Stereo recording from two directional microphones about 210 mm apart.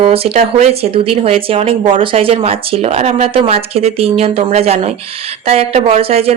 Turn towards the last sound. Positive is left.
turn(degrees=-30)  # may be behind; listen again after turning